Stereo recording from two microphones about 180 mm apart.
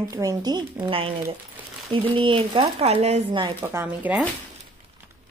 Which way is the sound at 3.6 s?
10° right (ahead or behind).